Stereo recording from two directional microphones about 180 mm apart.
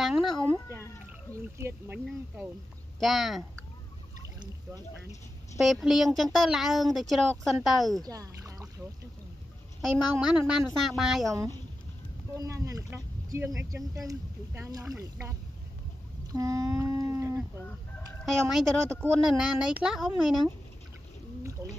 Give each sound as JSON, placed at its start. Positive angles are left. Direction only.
{"t": 0.0, "sound": "speech", "side_deg": 0}
{"t": 5.6, "sound": "speech", "side_deg": 0}
{"t": 8.0, "sound": "speech", "side_deg": -20}
{"t": 9.8, "sound": "speech", "side_deg": -5}
{"t": 11.3, "sound": "a sound", "side_deg": -20}
{"t": 12.4, "sound": "speech", "side_deg": -20}
{"t": 16.3, "sound": "a sound", "side_deg": -20}
{"t": 18.2, "sound": "speech", "side_deg": 0}